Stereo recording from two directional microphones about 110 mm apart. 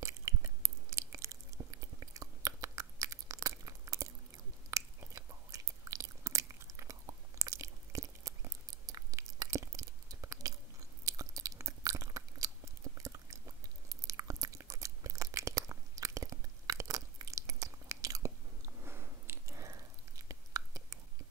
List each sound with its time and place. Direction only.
0.0 s chewing: 25° right (ahead or behind)
13.8 s biting: 30° right (ahead or behind)
19.5 s whispering: 30° right (ahead or behind)